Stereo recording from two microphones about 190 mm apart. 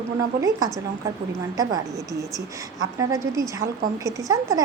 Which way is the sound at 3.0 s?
15° right (ahead or behind).